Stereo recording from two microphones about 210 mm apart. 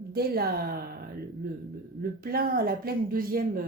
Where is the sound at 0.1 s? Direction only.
45° right (ahead or behind).